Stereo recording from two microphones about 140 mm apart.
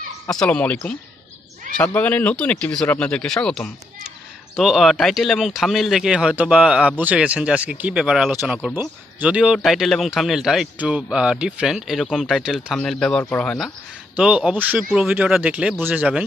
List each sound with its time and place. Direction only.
0.3 s speech: 5° left (ahead or behind)
2.0 s speech: 10° left (ahead or behind)
8.3 s speech: 15° right (ahead or behind); by 13.2 s 5° left (ahead or behind)
13.2 s speech: 15° left (ahead or behind)
14.1 s speech: 5° right (ahead or behind)